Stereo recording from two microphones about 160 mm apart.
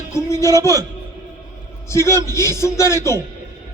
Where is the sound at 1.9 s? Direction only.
15° left (ahead or behind).